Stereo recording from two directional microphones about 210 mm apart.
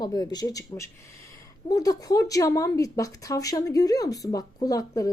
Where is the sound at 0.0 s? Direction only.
20° left (ahead or behind).